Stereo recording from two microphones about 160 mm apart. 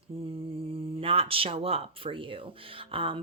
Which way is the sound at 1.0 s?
35° right (ahead or behind).